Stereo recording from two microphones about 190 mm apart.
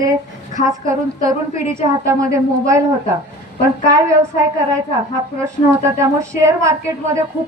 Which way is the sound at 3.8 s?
15° right (ahead or behind).